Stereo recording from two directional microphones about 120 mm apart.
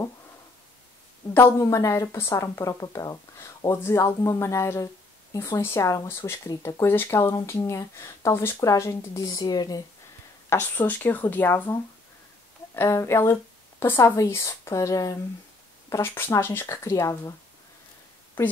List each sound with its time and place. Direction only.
1.3 s speech: 20° left (ahead or behind)
10.5 s speech: 20° left (ahead or behind)